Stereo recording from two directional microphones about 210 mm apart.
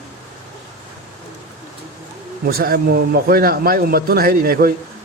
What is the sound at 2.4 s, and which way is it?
Speech, 45° right (ahead or behind).